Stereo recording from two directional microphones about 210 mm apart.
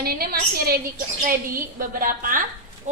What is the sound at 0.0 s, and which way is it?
A woman's voice, 45° right (ahead or behind).